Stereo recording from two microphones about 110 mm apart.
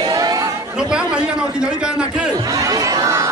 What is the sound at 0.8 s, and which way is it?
A man's voice, 10° right (ahead or behind).